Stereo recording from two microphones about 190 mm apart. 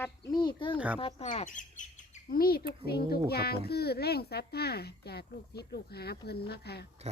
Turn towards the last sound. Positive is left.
turn(degrees=60)  # may be behind; listen again after turning